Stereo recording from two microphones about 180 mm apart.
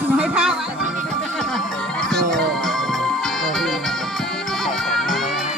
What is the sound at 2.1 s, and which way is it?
Music, centre (ahead or behind).